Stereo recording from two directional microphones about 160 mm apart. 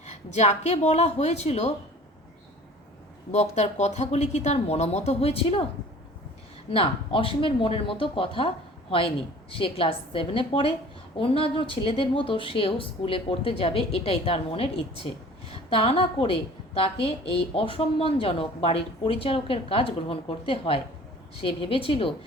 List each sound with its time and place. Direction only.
0.0 s speech: 45° left (ahead or behind)
3.3 s speech: 45° left (ahead or behind)
6.7 s a woman's voice: 35° left (ahead or behind)